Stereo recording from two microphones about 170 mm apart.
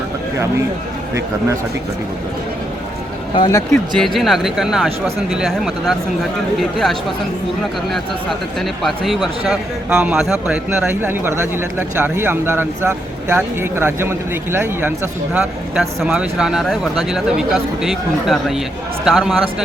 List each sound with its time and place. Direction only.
3.3 s speech: 25° left (ahead or behind)
3.7 s speech: centre (ahead or behind)
8.5 s speech: centre (ahead or behind)